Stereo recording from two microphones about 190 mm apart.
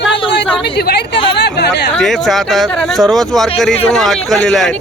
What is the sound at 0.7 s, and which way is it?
Speech, 60° left (ahead or behind).